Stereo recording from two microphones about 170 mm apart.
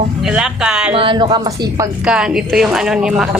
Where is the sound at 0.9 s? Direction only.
30° right (ahead or behind).